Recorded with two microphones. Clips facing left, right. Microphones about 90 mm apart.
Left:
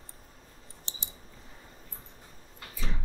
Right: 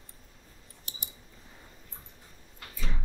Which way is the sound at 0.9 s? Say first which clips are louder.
Left 1 dB; 30° left (ahead or behind).